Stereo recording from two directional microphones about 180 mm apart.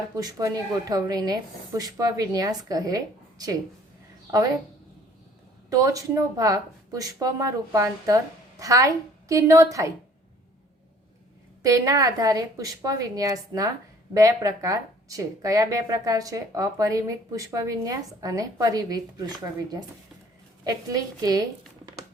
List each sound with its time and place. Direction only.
0.2 s a woman's voice: 20° right (ahead or behind)
5.7 s a woman's voice: 20° right (ahead or behind)
11.6 s a woman's voice: 20° right (ahead or behind)
20.7 s a woman's voice: 20° right (ahead or behind)